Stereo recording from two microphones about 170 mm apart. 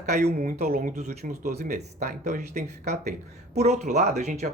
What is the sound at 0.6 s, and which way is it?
Speech, 60° right (ahead or behind).